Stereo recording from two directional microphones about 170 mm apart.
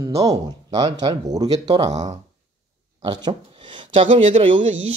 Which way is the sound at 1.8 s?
45° right (ahead or behind).